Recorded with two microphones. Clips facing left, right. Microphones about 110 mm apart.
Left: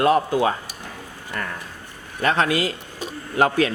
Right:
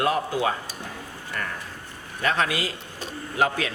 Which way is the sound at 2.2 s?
45° left (ahead or behind).